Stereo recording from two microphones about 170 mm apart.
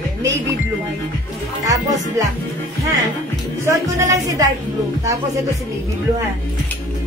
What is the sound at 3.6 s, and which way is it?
Speech, 20° right (ahead or behind).